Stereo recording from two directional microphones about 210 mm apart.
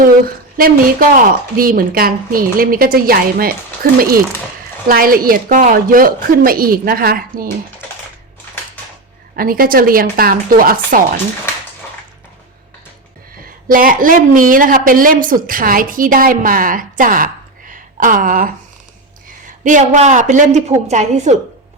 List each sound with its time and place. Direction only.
0.5 s a woman's voice: 45° right (ahead or behind)
9.3 s a woman's voice: 45° right (ahead or behind)
13.7 s a woman's voice: 40° right (ahead or behind)
19.6 s a woman's voice: 35° right (ahead or behind)